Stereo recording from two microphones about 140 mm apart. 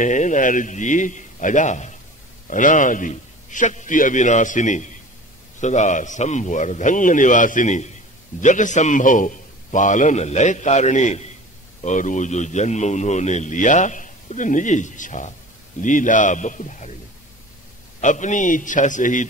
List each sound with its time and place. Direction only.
0.0 s speech: 65° left (ahead or behind)
18.0 s speech: 60° left (ahead or behind)